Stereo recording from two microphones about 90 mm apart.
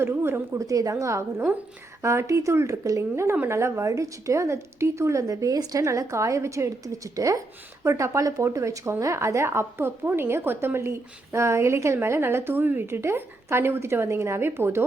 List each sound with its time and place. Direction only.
0.0 s a woman's voice: 25° right (ahead or behind)